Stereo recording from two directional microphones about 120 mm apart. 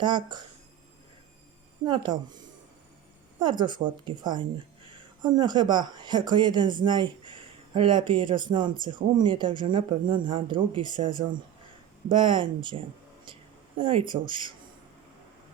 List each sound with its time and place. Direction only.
0.0 s speech: 40° right (ahead or behind)
1.8 s speech: 40° right (ahead or behind)
12.0 s speech: 45° right (ahead or behind)